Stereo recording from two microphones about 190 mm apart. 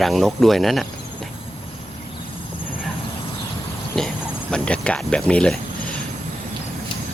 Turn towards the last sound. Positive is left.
turn(degrees=5)  # may be behind; listen again after turning